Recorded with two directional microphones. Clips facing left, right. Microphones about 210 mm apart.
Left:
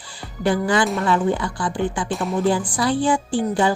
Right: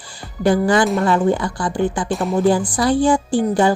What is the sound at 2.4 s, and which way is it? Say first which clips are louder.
Speech: right 4 dB; 45° right (ahead or behind).